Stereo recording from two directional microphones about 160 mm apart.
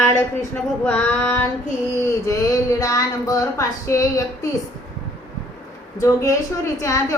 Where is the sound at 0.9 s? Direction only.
5° left (ahead or behind).